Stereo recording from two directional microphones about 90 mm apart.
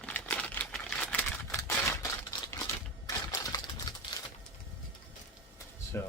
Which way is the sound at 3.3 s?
45° left (ahead or behind).